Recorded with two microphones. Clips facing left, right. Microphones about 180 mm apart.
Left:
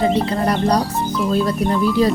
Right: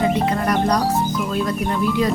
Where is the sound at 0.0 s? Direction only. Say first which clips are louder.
Left 2 dB; 30° left (ahead or behind).